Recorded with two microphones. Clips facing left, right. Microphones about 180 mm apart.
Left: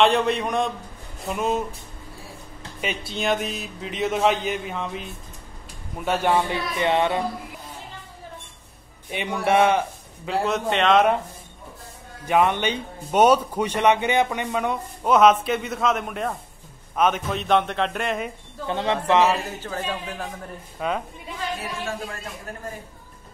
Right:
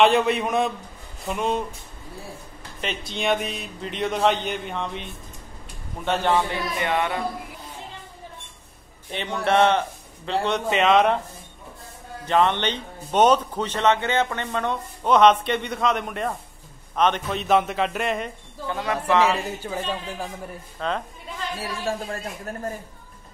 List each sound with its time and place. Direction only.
0.0 s a man's voice: centre (ahead or behind)
2.8 s a man's voice: 10° left (ahead or behind)
9.1 s a man's voice: 10° left (ahead or behind)
12.3 s a man's voice: 10° left (ahead or behind)
18.7 s a man's voice: 25° left (ahead or behind)
19.6 s speech: 10° right (ahead or behind)
20.8 s a man's voice: 10° left (ahead or behind)
21.5 s speech: 35° right (ahead or behind)